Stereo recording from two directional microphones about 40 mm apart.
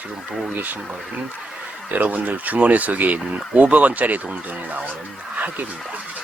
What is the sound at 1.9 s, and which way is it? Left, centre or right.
Speech, right.